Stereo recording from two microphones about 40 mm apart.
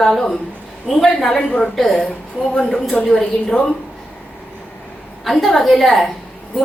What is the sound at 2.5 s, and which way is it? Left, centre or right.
Speech, centre.